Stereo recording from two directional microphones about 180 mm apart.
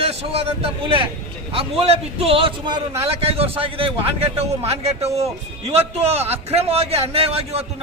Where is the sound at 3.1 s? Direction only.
35° right (ahead or behind).